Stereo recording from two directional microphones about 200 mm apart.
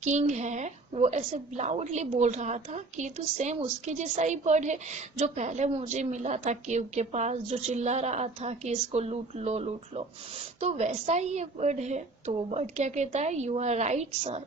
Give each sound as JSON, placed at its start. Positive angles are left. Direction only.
{"t": 0.0, "sound": "a woman's voice", "side_deg": -35}